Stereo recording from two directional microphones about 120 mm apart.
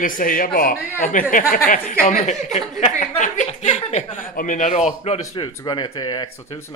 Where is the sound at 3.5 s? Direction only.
60° left (ahead or behind).